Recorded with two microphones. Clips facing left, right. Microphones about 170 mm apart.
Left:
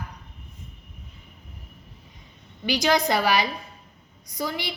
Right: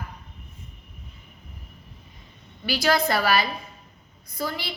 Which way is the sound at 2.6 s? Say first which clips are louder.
Left 1 dB; 20° left (ahead or behind).